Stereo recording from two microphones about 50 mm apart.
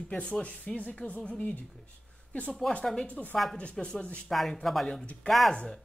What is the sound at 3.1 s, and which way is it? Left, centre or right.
Speech, left.